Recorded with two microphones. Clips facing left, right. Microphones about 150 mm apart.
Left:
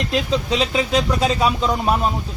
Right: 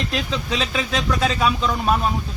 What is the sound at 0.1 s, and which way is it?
Speech, 30° left (ahead or behind).